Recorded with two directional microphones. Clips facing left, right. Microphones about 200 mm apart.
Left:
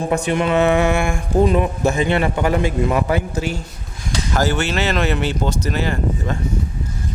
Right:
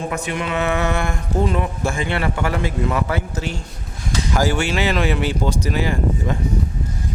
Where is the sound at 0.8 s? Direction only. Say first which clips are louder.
Left 4 dB; 10° left (ahead or behind).